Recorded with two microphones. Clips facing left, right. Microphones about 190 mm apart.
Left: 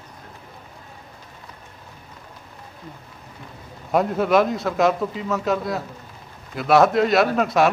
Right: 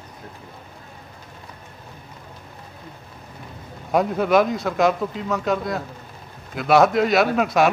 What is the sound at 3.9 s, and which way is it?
A man's voice, centre (ahead or behind).